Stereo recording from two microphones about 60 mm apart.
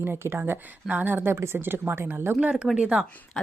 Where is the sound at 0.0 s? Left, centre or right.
Right.